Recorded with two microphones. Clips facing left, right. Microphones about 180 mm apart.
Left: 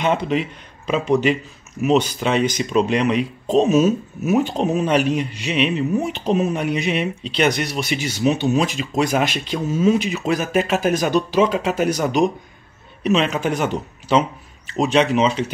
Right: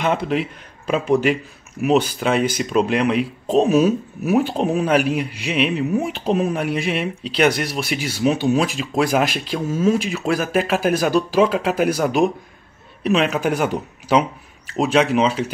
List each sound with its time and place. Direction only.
0.0 s speech: 5° right (ahead or behind)